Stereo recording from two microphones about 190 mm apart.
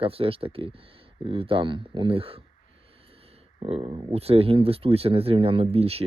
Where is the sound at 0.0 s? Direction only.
30° right (ahead or behind).